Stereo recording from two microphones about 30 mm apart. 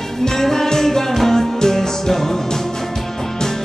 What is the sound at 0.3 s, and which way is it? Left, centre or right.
Music, centre.